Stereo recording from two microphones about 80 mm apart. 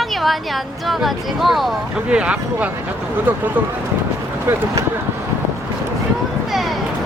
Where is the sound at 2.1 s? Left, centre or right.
Centre.